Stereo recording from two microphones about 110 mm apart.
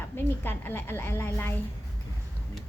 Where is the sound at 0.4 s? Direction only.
20° left (ahead or behind).